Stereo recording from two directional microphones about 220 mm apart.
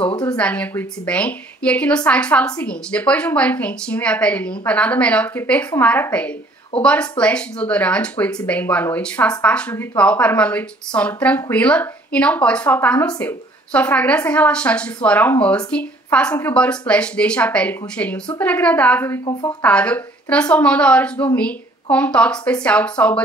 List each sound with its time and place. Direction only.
0.1 s speech: 20° left (ahead or behind)
0.4 s a woman's voice: 5° left (ahead or behind)